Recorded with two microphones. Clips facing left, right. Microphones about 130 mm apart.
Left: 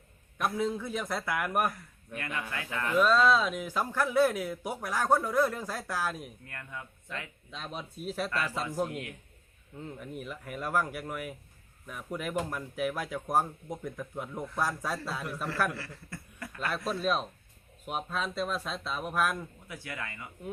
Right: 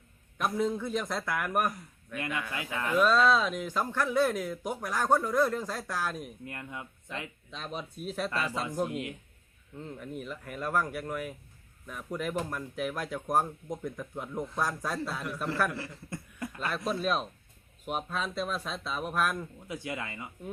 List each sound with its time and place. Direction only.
0.5 s a man's voice: 5° left (ahead or behind)
2.1 s speech: 20° right (ahead or behind)
2.9 s a man's voice: centre (ahead or behind)
6.4 s speech: 20° right (ahead or behind)
7.5 s a man's voice: centre (ahead or behind)
8.3 s speech: 30° right (ahead or behind)
9.8 s a man's voice: 5° left (ahead or behind)
15.7 s a sound: 20° right (ahead or behind)
16.6 s a man's voice: centre (ahead or behind)
19.6 s speech: 20° right (ahead or behind)